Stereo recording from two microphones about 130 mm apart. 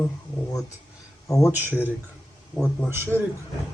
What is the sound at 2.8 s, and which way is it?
Speech, 20° right (ahead or behind).